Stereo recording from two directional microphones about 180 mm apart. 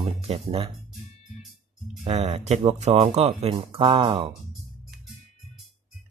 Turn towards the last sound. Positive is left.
turn(degrees=-30)  # may be behind; listen again after turning